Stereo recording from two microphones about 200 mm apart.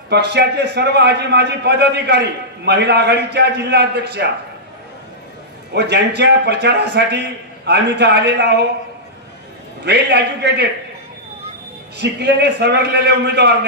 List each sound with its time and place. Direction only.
0.1 s a man's voice: 55° right (ahead or behind)
5.8 s a man's voice: 60° right (ahead or behind)
9.8 s a man's voice: 60° right (ahead or behind)
12.0 s a man's voice: 55° right (ahead or behind)